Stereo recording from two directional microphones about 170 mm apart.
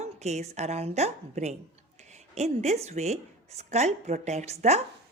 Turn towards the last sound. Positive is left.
turn(degrees=-40)  # may be behind; listen again after turning